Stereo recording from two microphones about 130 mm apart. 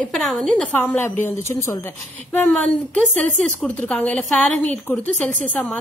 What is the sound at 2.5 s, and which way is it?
A woman's voice, 5° left (ahead or behind).